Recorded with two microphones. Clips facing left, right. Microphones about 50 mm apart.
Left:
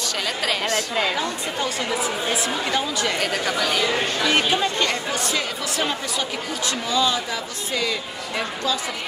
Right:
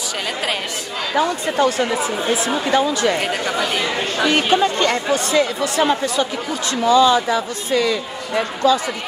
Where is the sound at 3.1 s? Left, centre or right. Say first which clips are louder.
Right 3 dB; right.